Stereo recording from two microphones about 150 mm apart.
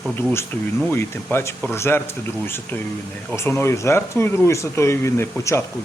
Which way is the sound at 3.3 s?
15° left (ahead or behind).